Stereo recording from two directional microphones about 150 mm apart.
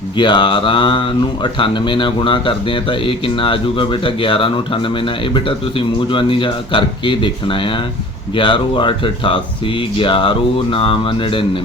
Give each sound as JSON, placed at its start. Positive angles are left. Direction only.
{"t": 0.2, "sound": "speech", "side_deg": 30}